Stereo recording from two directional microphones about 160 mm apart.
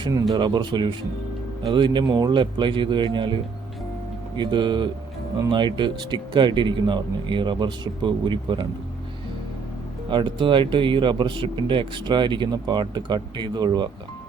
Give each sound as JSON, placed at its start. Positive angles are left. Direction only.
{"t": 0.0, "sound": "speech", "side_deg": -20}
{"t": 10.1, "sound": "speech", "side_deg": -30}